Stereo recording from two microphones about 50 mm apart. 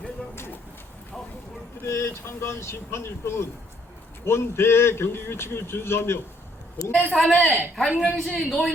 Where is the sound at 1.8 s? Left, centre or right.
Left.